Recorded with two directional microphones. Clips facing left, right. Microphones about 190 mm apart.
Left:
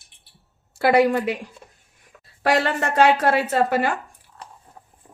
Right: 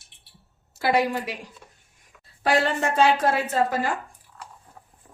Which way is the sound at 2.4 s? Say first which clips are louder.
Left 2 dB; 65° left (ahead or behind).